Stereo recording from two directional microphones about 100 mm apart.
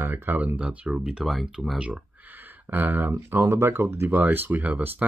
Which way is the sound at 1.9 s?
15° right (ahead or behind).